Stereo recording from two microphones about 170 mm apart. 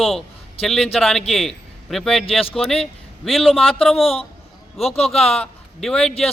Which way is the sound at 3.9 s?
35° left (ahead or behind).